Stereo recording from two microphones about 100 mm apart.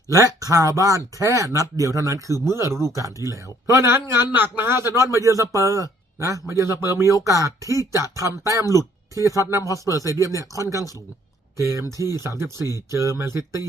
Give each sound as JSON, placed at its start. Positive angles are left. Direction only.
{"t": 0.1, "sound": "speech", "side_deg": -35}
{"t": 9.6, "sound": "speech", "side_deg": 35}
{"t": 9.9, "sound": "speech", "side_deg": -30}